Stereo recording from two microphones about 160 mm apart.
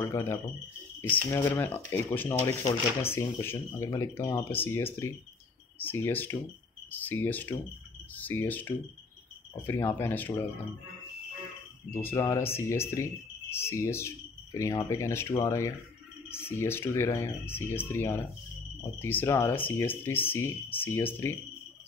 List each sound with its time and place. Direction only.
0.0 s speech: 15° left (ahead or behind)
11.9 s speech: 15° left (ahead or behind)